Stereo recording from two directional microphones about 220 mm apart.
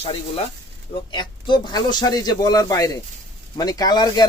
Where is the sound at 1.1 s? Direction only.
20° left (ahead or behind).